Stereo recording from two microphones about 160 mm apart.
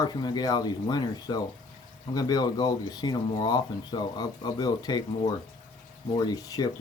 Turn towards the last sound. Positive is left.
turn(degrees=25)  # may be behind; listen again after turning